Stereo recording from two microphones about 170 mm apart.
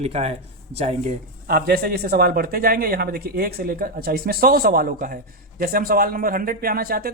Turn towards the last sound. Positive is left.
turn(degrees=-60)  # may be behind; listen again after turning